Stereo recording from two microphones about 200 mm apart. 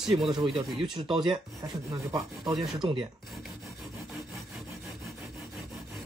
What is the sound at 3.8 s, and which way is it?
Sawing, centre (ahead or behind).